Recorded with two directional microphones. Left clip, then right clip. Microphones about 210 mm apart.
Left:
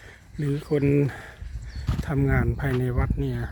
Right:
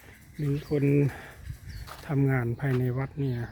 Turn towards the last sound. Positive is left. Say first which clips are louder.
# left 4 dB
turn(degrees=15)  # may be behind; listen again after turning